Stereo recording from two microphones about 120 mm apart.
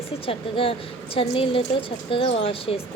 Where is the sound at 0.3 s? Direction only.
50° left (ahead or behind).